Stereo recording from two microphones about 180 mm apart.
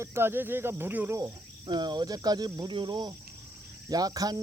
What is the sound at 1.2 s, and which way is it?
Speech, 20° right (ahead or behind).